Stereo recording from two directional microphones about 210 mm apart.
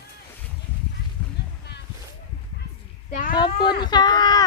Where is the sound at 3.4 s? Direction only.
20° left (ahead or behind).